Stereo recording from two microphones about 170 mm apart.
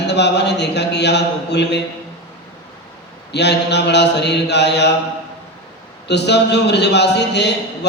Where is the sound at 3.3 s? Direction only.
85° left.